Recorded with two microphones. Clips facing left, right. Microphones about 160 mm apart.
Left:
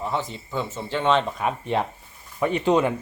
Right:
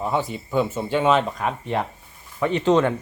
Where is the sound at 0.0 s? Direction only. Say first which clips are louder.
Right 4 dB; 10° right (ahead or behind).